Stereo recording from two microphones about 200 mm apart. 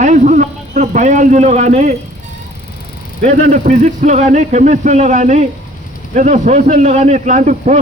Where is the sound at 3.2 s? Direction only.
40° right (ahead or behind).